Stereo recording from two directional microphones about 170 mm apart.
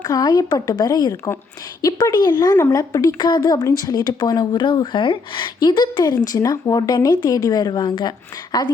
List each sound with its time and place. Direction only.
0.0 s a woman's voice: 20° left (ahead or behind)